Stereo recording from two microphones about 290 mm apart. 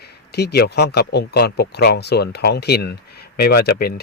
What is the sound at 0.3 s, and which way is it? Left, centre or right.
Speech, left.